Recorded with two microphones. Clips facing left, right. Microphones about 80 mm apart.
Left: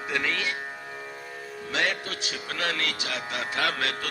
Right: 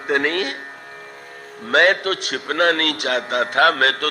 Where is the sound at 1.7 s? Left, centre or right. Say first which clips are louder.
Right 13 dB; right.